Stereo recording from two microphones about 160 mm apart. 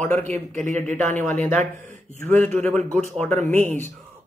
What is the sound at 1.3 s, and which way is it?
Speech, 50° right (ahead or behind).